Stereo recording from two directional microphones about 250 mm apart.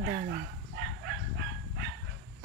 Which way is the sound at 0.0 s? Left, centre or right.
Right.